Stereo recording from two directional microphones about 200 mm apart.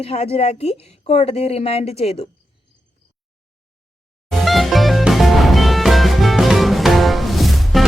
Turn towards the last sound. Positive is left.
turn(degrees=0)  # may be behind; listen again after turning